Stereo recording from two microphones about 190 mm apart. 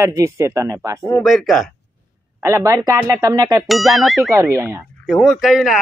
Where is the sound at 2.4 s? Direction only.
15° right (ahead or behind).